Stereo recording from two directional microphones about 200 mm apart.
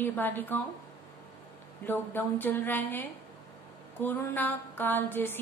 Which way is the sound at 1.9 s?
10° left (ahead or behind).